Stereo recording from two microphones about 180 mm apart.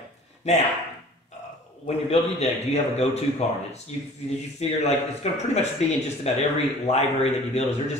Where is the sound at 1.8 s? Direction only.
35° left (ahead or behind).